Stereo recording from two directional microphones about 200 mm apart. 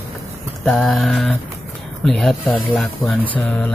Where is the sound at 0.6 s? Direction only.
Centre (ahead or behind).